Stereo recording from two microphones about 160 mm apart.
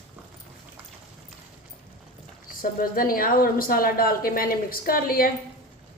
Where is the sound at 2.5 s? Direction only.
65° left (ahead or behind).